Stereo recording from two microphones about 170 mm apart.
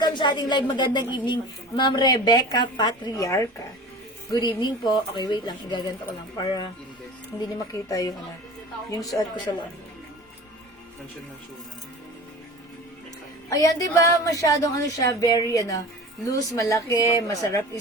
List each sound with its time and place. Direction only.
0.0 s a woman's voice: 25° left (ahead or behind)
7.7 s a woman's voice: 20° left (ahead or behind)
13.5 s a woman's voice: 20° left (ahead or behind)